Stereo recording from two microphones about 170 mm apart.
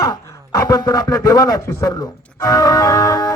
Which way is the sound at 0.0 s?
25° left (ahead or behind).